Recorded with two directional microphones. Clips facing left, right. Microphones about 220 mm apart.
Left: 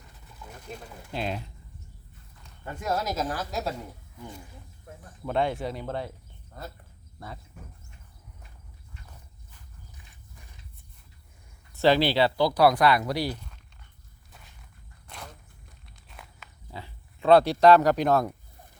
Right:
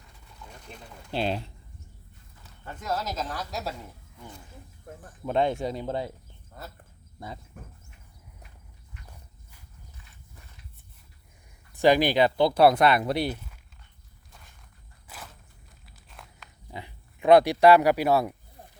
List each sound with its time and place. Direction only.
1.1 s speech: 30° right (ahead or behind)
2.8 s a woman's voice: 10° left (ahead or behind)
5.2 s speech: 20° right (ahead or behind)
11.7 s speech: 15° right (ahead or behind)
13.3 s a sound: 5° right (ahead or behind)
15.0 s walk: 5° right (ahead or behind)
16.7 s speech: 15° right (ahead or behind)